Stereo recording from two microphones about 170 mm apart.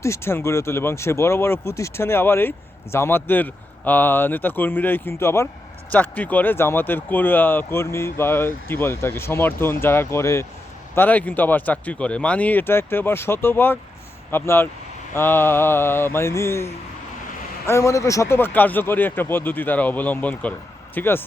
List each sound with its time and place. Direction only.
0.0 s speech: 15° left (ahead or behind)
17.7 s speech: 15° left (ahead or behind)